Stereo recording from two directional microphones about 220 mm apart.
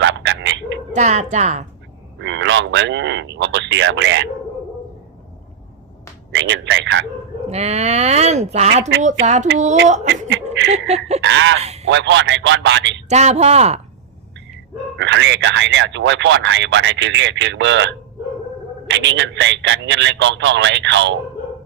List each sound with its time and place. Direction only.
0.0 s chicken: 55° right (ahead or behind)
0.9 s speech: 30° right (ahead or behind)
2.1 s speech: 55° right (ahead or behind)
6.3 s speech: 55° right (ahead or behind)
7.5 s speech: 30° right (ahead or behind)
10.1 s a sound: 55° right (ahead or behind)
10.7 s speech: 30° right (ahead or behind)
11.2 s a sound: 55° right (ahead or behind)
11.6 s a sound: 30° right (ahead or behind)
11.9 s a man's voice: 55° right (ahead or behind)
13.1 s speech: 30° right (ahead or behind)
14.9 s speech: 55° right (ahead or behind)